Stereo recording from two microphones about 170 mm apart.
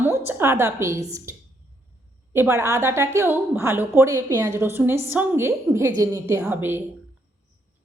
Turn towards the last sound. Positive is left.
turn(degrees=-10)  # may be behind; listen again after turning